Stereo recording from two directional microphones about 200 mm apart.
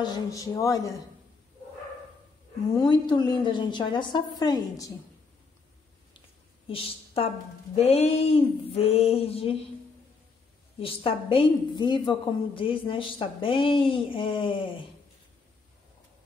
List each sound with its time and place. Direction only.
0.0 s speech: 20° left (ahead or behind)
2.9 s a woman's voice: 20° left (ahead or behind)
7.7 s a woman's voice: 30° left (ahead or behind)
10.8 s a woman's voice: 25° left (ahead or behind)